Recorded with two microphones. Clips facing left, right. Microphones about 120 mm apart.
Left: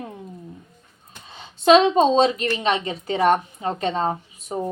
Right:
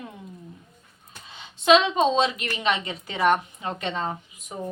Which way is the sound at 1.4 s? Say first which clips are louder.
Left 4 dB; 40° left (ahead or behind).